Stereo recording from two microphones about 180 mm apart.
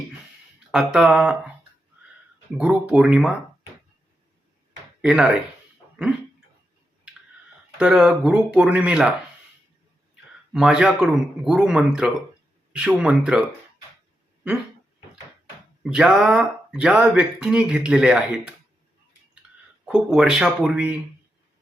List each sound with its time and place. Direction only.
0.7 s speech: 5° right (ahead or behind)
2.6 s speech: 5° right (ahead or behind)
5.0 s speech: 5° right (ahead or behind)
7.8 s speech: 5° right (ahead or behind)
10.5 s speech: 5° right (ahead or behind)
15.8 s speech: 5° right (ahead or behind)
19.8 s speech: 5° right (ahead or behind)